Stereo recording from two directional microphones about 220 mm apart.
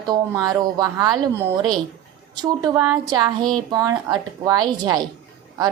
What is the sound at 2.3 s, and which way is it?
A woman's voice, 15° right (ahead or behind).